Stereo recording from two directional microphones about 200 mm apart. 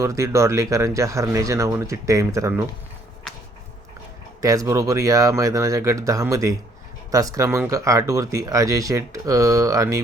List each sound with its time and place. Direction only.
0.0 s speech: 15° right (ahead or behind)
4.4 s speech: 15° right (ahead or behind)